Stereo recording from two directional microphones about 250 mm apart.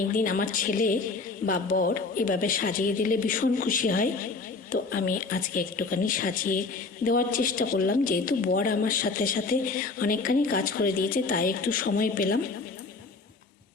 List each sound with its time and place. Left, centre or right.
0.1 s speech: left